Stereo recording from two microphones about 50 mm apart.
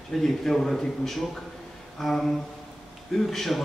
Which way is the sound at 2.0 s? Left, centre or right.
Centre.